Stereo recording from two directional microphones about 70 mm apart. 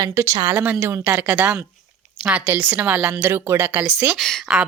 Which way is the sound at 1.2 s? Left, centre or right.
Right.